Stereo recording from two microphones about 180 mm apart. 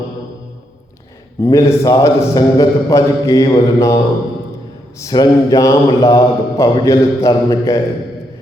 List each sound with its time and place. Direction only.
1.4 s a man's voice: 15° left (ahead or behind)